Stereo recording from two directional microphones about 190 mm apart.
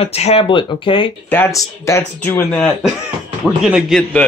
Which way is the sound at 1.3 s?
15° left (ahead or behind).